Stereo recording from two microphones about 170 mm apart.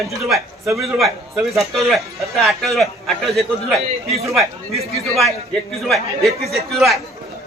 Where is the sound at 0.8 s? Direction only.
Centre (ahead or behind).